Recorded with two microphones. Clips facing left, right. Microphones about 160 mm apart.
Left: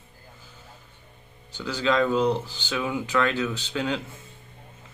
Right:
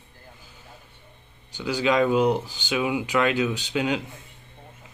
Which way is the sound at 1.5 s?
15° right (ahead or behind).